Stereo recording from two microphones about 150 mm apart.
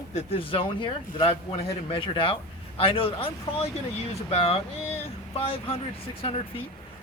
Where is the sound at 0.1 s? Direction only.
35° left (ahead or behind).